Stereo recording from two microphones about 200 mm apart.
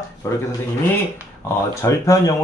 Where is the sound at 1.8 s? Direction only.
15° left (ahead or behind).